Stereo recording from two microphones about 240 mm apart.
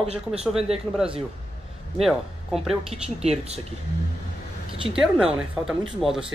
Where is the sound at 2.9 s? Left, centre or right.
Right.